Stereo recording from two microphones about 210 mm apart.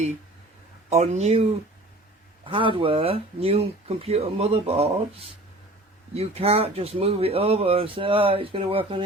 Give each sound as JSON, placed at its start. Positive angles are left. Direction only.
{"t": 0.9, "sound": "speech", "side_deg": -30}